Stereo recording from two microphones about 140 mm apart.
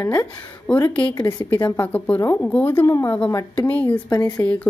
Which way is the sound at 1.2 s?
25° left (ahead or behind).